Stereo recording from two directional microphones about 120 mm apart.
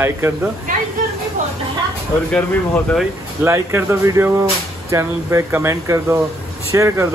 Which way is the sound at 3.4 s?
25° right (ahead or behind).